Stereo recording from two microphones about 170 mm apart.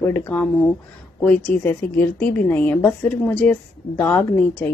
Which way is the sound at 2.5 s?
10° left (ahead or behind).